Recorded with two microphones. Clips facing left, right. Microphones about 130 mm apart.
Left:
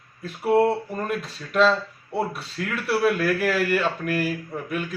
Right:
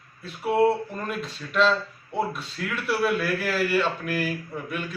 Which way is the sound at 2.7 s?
Centre (ahead or behind).